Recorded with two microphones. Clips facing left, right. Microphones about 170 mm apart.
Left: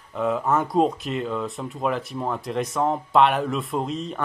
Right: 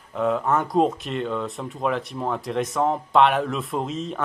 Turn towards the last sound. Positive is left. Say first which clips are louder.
# even
turn(degrees=0)  # may be behind; listen again after turning